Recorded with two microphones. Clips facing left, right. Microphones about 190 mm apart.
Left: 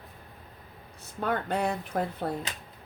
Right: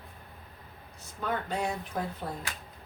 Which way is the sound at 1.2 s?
60° left (ahead or behind).